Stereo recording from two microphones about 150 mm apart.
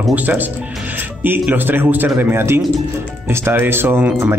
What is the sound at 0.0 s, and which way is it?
A man's voice, 10° right (ahead or behind).